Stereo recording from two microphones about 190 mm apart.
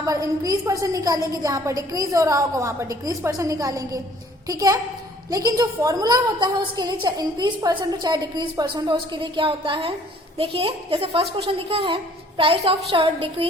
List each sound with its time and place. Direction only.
0.0 s a woman's voice: 20° right (ahead or behind)